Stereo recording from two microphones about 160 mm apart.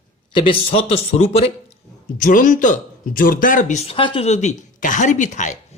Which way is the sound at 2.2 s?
55° left (ahead or behind).